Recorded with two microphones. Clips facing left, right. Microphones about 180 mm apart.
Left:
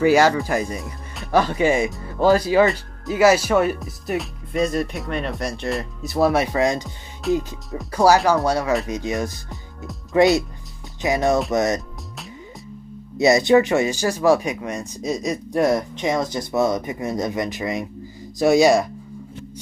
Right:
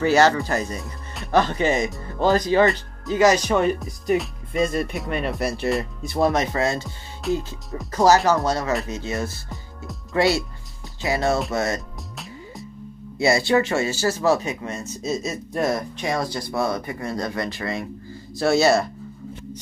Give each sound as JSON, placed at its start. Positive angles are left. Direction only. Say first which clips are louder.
{"t": 0.0, "sound": "speech", "louder": "left 2 dB", "side_deg": 10}
{"t": 7.2, "sound": "music", "louder": "left 3 dB", "side_deg": 0}
{"t": 7.9, "sound": "speech", "louder": "left 1 dB", "side_deg": 10}
{"t": 13.2, "sound": "speech", "louder": "left 4 dB", "side_deg": 20}